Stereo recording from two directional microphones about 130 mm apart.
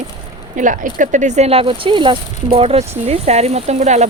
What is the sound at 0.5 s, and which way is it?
Speech, 80° right.